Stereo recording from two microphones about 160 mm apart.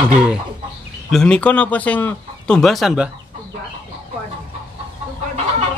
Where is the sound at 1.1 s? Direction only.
5° left (ahead or behind).